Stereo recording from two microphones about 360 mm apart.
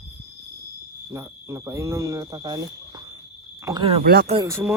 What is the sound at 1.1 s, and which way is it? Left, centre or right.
Speech, centre.